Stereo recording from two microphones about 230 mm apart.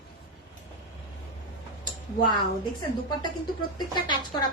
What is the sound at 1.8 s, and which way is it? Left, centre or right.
A woman's voice, centre.